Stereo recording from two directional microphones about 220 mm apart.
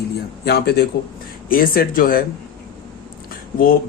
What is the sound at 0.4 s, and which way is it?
Speech, 45° left (ahead or behind).